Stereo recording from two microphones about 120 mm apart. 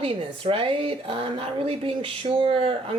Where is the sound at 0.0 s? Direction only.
50° right (ahead or behind).